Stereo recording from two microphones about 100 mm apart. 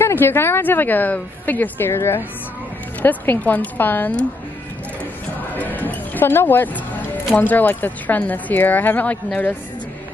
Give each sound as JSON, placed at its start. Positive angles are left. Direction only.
{"t": 0.0, "sound": "a woman's voice", "side_deg": 20}
{"t": 5.5, "sound": "a sound", "side_deg": 15}
{"t": 7.3, "sound": "speech", "side_deg": 20}